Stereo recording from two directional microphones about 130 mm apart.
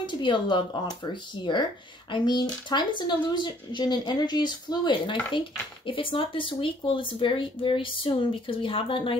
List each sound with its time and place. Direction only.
0.0 s speech: 40° left (ahead or behind)
2.0 s speech: 35° left (ahead or behind)